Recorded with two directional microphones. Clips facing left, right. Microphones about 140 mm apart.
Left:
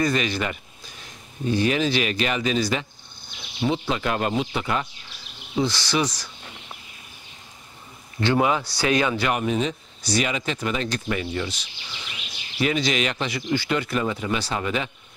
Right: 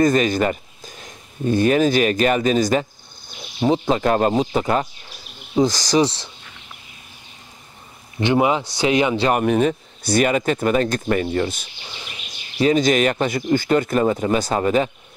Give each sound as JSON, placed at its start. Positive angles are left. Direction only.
{"t": 0.0, "sound": "speech", "side_deg": -45}
{"t": 8.2, "sound": "speech", "side_deg": -20}
{"t": 9.3, "sound": "speech", "side_deg": -55}
{"t": 12.5, "sound": "speech", "side_deg": -40}